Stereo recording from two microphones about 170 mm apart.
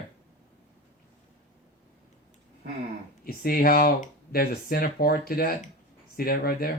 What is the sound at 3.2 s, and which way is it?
Speech, 60° left (ahead or behind).